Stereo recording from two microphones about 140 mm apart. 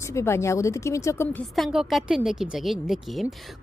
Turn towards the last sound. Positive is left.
turn(degrees=0)  # may be behind; listen again after turning